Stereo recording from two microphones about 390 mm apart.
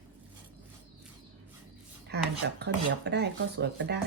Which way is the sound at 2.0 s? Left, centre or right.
Right.